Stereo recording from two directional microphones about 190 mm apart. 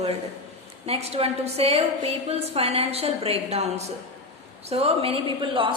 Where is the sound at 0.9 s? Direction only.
30° right (ahead or behind).